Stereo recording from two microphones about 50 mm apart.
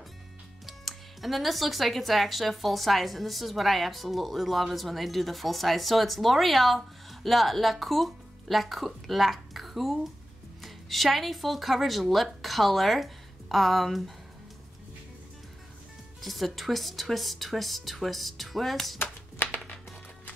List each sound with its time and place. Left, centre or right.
0.7 s speech: centre
16.2 s speech: centre
19.3 s music: left